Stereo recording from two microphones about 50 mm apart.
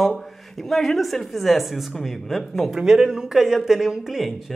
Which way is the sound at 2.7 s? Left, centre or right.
Centre.